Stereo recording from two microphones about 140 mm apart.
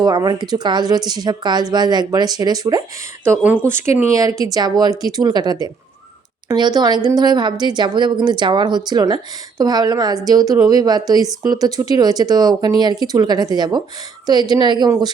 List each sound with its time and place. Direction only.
0.0 s speech: 30° right (ahead or behind)
3.7 s speech: 15° right (ahead or behind)